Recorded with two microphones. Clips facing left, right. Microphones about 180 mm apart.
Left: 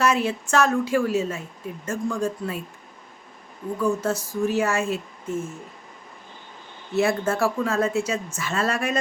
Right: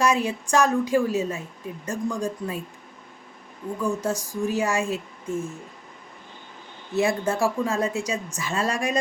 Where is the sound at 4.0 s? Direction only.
15° right (ahead or behind).